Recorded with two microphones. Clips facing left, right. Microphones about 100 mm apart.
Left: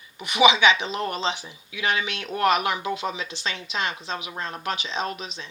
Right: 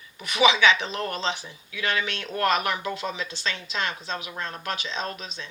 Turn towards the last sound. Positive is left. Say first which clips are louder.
# left 3 dB
turn(degrees=20)  # may be behind; listen again after turning